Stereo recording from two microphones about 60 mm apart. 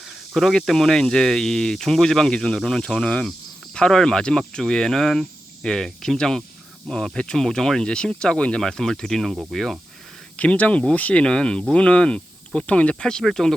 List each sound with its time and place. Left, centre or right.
0.0 s speech: centre
10.3 s speech: left; by 13.6 s centre